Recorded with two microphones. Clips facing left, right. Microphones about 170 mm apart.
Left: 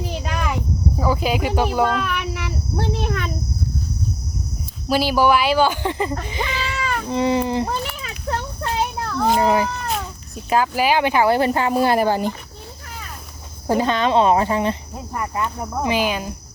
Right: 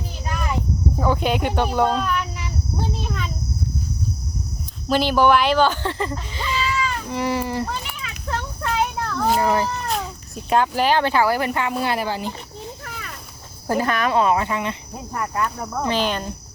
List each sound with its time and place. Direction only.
0.0 s a sound: 90° left
0.9 s speech: 5° left (ahead or behind)
1.9 s insect: 70° left (ahead or behind)
4.9 s speech: 5° left (ahead or behind)
6.6 s a sound: 65° left (ahead or behind)
7.1 s speech: 25° left (ahead or behind)
7.7 s a sound: 35° left (ahead or behind)
9.1 s speech: centre (ahead or behind)
9.4 s speech: 15° left (ahead or behind)
9.9 s speech: centre (ahead or behind); by 11.3 s 15° left (ahead or behind)
11.3 s speech: 30° left (ahead or behind); by 12.3 s 50° left (ahead or behind)
12.8 s a sound: 75° right (ahead or behind)
13.7 s speech: 20° left (ahead or behind)
15.1 s speech: 5° left (ahead or behind)